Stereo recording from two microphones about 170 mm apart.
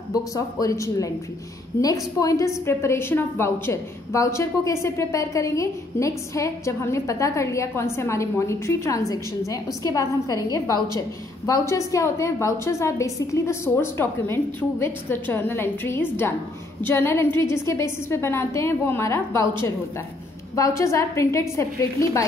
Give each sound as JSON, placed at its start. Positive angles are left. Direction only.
{"t": 0.1, "sound": "a woman's voice", "side_deg": 20}
{"t": 20.5, "sound": "a woman's voice", "side_deg": 20}